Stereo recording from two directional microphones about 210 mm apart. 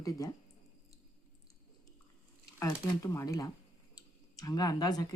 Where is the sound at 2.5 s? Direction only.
15° left (ahead or behind).